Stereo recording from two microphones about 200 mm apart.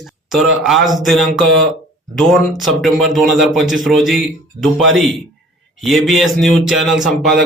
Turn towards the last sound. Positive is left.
turn(degrees=0)  # may be behind; listen again after turning